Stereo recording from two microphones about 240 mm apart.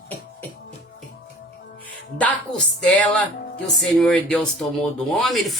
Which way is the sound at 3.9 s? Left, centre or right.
Centre.